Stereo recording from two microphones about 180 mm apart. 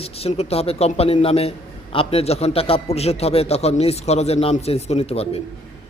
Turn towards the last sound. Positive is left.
turn(degrees=35)  # may be behind; listen again after turning